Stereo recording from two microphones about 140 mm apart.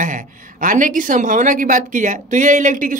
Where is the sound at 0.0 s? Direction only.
75° right (ahead or behind).